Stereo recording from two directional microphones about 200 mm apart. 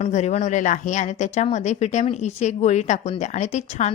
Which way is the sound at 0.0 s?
35° left (ahead or behind).